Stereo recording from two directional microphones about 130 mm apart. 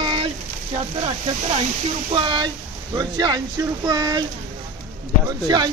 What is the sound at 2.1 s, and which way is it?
Speech, 40° right (ahead or behind).